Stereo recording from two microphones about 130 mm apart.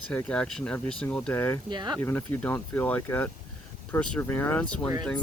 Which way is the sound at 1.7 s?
35° right (ahead or behind).